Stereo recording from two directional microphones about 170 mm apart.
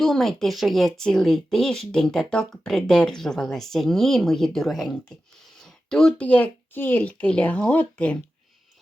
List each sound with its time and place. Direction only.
0.0 s speech: centre (ahead or behind)